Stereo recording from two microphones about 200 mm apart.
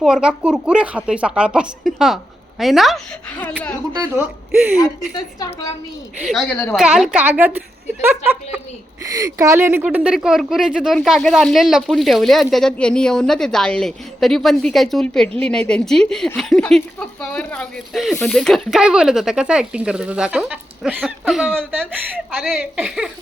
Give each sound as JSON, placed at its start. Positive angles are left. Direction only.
{"t": 0.0, "sound": "speech", "side_deg": -5}
{"t": 4.8, "sound": "a woman's voice", "side_deg": 20}
{"t": 6.2, "sound": "a woman's voice", "side_deg": 5}
{"t": 6.7, "sound": "a woman's voice", "side_deg": -5}